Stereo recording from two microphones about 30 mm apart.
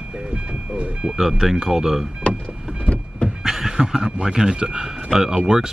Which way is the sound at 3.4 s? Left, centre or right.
Centre.